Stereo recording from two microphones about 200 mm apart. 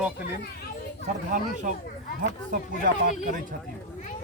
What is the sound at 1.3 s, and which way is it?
Speech, 40° right (ahead or behind).